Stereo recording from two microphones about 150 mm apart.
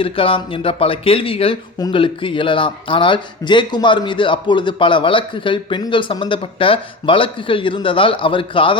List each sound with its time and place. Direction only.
0.0 s speech: 35° left (ahead or behind)